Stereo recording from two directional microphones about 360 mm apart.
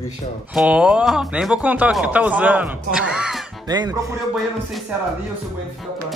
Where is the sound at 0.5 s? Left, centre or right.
Centre.